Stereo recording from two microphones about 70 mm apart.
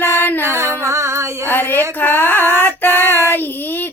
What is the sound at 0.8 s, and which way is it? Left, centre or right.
Female singing, right.